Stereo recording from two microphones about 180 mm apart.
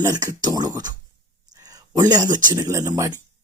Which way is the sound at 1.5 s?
20° right (ahead or behind).